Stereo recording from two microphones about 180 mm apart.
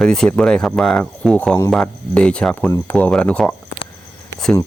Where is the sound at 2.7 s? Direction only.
20° left (ahead or behind).